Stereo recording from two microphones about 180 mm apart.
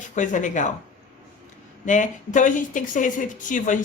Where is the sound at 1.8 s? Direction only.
45° left (ahead or behind).